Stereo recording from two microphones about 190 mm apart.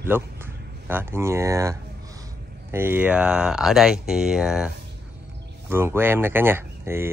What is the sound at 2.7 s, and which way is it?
Speech, 10° right (ahead or behind).